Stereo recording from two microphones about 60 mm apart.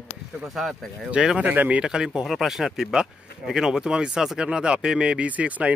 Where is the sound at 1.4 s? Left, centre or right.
Right.